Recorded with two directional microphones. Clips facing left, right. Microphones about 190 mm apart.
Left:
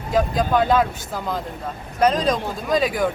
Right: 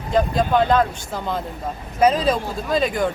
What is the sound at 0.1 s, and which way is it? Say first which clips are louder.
Speech: right 1 dB; centre (ahead or behind).